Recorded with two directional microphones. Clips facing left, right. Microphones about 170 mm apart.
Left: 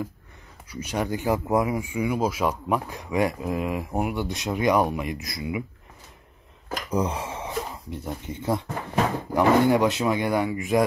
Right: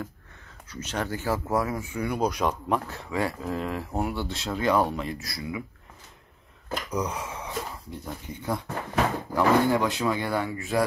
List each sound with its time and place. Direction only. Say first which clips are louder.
0.7 s speech: left 3 dB; 10° left (ahead or behind)
6.9 s speech: left 5 dB; 30° left (ahead or behind)